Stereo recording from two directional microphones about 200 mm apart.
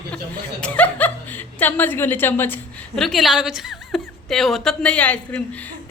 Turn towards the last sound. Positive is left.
turn(degrees=5)  # may be behind; listen again after turning